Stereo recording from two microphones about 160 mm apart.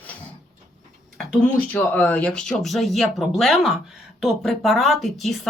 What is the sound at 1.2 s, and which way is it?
Speech, 5° left (ahead or behind).